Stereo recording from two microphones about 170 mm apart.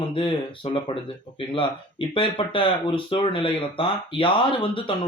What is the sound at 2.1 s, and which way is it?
Speech, 30° left (ahead or behind).